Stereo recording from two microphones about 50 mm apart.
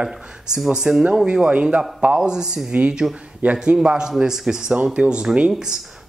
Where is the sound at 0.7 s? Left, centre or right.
Centre.